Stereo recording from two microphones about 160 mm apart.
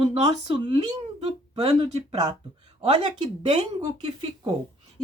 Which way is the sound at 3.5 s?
30° right (ahead or behind).